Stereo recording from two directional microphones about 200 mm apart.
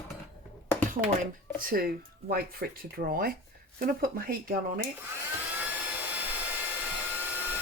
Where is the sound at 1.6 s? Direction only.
45° right (ahead or behind).